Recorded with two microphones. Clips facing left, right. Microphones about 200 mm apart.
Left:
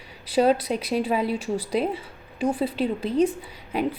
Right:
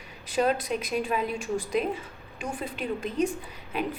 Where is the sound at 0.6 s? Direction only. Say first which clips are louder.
Left 4 dB; 30° left (ahead or behind).